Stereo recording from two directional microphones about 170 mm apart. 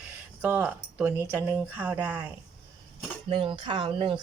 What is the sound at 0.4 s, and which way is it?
Speech, 10° right (ahead or behind).